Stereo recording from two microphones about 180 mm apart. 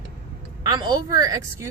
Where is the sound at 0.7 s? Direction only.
25° right (ahead or behind).